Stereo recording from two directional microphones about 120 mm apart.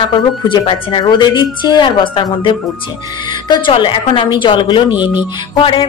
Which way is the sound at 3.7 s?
45° left (ahead or behind).